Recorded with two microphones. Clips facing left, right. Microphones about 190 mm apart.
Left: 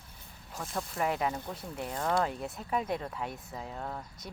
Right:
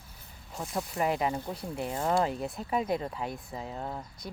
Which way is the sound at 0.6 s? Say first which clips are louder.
Right 3 dB; 15° right (ahead or behind).